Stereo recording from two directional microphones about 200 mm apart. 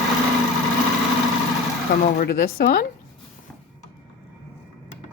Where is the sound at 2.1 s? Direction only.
50° left (ahead or behind).